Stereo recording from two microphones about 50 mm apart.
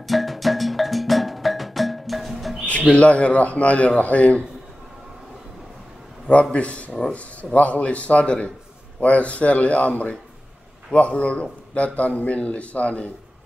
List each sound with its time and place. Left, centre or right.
0.0 s music: centre
2.9 s a man's voice: left
6.5 s a man's voice: left